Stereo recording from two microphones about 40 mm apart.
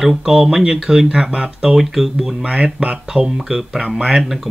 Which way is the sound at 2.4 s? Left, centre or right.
Right.